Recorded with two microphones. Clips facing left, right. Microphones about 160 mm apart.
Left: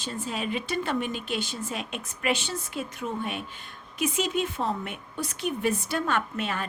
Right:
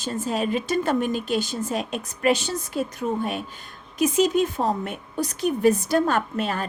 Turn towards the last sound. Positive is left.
turn(degrees=-40)  # may be behind; listen again after turning